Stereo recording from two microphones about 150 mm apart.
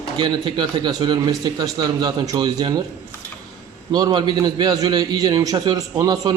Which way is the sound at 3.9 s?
30° right (ahead or behind).